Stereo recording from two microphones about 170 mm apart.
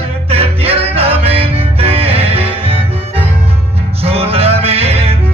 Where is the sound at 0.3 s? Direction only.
35° right (ahead or behind).